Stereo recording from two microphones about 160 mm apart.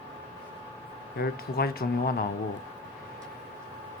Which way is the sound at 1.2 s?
75° left (ahead or behind).